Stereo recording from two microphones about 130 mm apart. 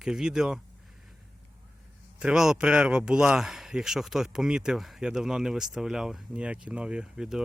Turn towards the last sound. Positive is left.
turn(degrees=-5)  # may be behind; listen again after turning